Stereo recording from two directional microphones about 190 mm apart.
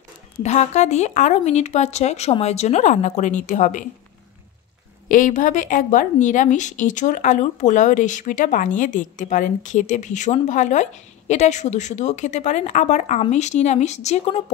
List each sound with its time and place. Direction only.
0.4 s a woman's voice: 35° left (ahead or behind)
5.0 s a woman's voice: 45° left (ahead or behind)